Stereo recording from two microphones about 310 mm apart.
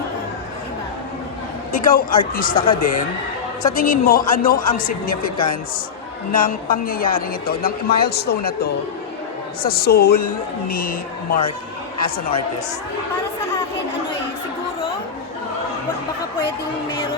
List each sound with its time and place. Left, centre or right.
1.7 s speech: left
6.3 s speech: left
9.6 s a woman's voice: left